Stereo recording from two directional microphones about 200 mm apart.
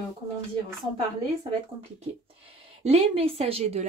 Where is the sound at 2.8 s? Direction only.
30° right (ahead or behind).